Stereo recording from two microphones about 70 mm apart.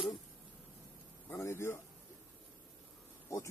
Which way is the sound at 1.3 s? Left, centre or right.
Left.